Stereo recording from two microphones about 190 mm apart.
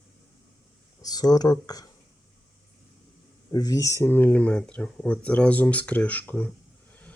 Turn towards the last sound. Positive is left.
turn(degrees=5)  # may be behind; listen again after turning